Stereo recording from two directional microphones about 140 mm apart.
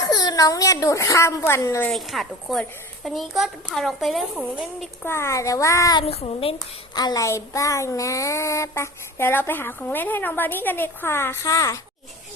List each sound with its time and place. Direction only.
0.1 s speech: 30° left (ahead or behind)
1.9 s a child's voice: centre (ahead or behind)
5.0 s speech: 20° left (ahead or behind)
6.0 s a child's voice: 45° left (ahead or behind)
6.9 s speech: 30° left (ahead or behind)